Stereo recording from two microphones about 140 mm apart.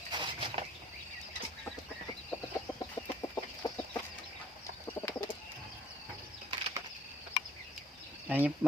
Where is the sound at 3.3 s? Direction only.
20° left (ahead or behind).